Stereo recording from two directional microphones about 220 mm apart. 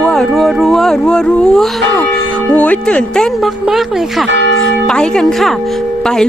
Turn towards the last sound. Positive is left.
turn(degrees=5)  # may be behind; listen again after turning